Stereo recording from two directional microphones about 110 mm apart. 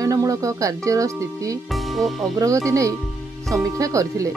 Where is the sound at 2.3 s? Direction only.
30° right (ahead or behind).